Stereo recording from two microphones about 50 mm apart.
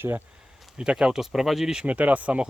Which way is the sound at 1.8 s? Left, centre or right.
Right.